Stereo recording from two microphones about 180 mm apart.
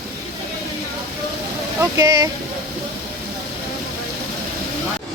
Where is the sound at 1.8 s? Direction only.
20° right (ahead or behind).